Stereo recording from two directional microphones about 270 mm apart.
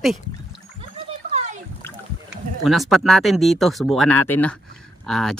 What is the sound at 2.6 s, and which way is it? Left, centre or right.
Speech, centre.